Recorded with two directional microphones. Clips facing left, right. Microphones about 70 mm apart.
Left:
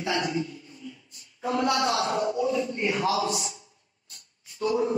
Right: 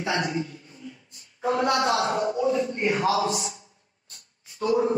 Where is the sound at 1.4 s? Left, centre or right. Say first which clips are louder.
Right 2 dB; right.